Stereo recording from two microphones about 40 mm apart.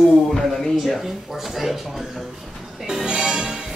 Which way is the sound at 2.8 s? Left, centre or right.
Centre.